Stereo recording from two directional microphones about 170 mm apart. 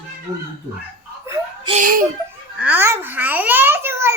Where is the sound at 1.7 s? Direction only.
50° right (ahead or behind).